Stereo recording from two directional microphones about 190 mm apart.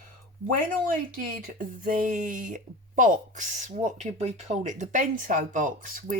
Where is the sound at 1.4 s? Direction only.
50° right (ahead or behind).